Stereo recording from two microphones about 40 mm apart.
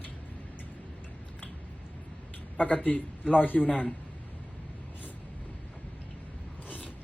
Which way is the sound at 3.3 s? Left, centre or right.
Left.